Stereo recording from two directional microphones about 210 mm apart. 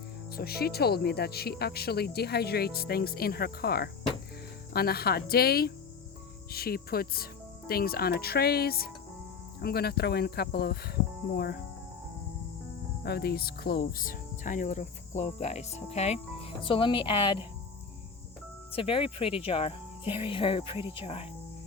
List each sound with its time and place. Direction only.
0.3 s speech: 50° left (ahead or behind)
13.0 s speech: 50° left (ahead or behind); by 17.4 s 25° left (ahead or behind)
18.7 s speech: 25° left (ahead or behind)
20.7 s speech: 10° right (ahead or behind)
21.0 s speech: 25° left (ahead or behind)